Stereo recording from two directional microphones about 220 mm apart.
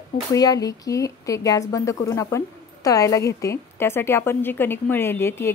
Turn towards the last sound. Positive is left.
turn(degrees=10)  # may be behind; listen again after turning